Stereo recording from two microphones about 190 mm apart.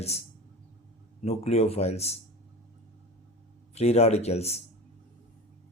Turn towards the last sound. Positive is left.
turn(degrees=35)  # may be behind; listen again after turning